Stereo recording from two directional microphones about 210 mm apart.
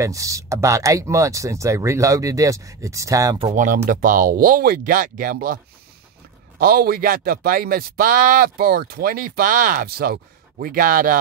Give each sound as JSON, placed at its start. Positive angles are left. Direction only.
{"t": 0.0, "sound": "speech", "side_deg": -15}
{"t": 3.4, "sound": "speech", "side_deg": -35}
{"t": 6.6, "sound": "speech", "side_deg": -45}